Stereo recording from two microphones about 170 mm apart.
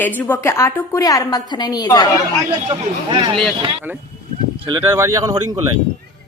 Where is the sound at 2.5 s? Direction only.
25° right (ahead or behind).